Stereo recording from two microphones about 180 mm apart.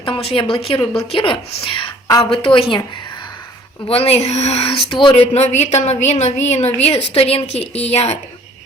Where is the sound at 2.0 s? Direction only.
20° left (ahead or behind).